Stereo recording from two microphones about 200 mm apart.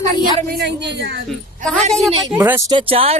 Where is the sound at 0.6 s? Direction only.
60° right (ahead or behind).